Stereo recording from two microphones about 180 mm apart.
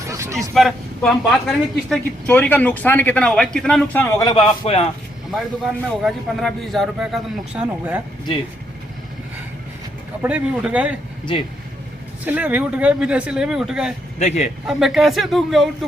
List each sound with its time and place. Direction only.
0.1 s vehicle: 15° right (ahead or behind)
0.5 s a woman's voice: centre (ahead or behind); by 4.9 s 30° left (ahead or behind)
5.9 s speech: centre (ahead or behind)
10.2 s speech: 5° right (ahead or behind)
12.2 s speech: 10° right (ahead or behind)
14.2 s a man's voice: 40° left (ahead or behind)
14.7 s speech: centre (ahead or behind)